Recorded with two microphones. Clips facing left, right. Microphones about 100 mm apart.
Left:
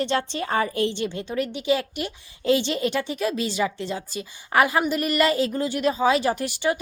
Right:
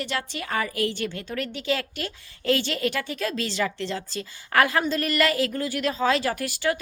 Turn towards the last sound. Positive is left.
turn(degrees=20)  # may be behind; listen again after turning